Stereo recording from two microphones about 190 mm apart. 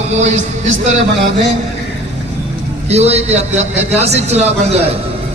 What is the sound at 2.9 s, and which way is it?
Music, 35° right (ahead or behind).